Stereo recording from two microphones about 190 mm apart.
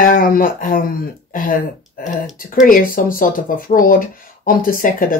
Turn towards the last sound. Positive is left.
turn(degrees=45)  # may be behind; listen again after turning